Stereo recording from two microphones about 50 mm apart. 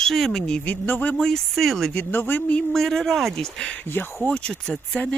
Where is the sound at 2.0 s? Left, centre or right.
Left.